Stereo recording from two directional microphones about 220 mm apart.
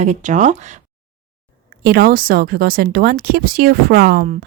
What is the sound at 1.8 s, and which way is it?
Speech, 45° right (ahead or behind).